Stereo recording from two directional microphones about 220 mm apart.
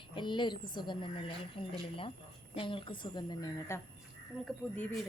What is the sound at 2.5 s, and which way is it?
A woman's voice, 25° left (ahead or behind).